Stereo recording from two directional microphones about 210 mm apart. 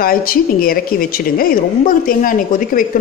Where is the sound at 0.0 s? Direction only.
45° left (ahead or behind).